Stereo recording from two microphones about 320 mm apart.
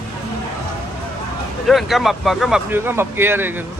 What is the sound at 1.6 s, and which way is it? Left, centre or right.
Speech, centre.